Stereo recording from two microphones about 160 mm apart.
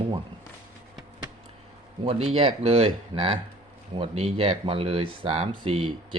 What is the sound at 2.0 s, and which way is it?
Speech, 40° right (ahead or behind).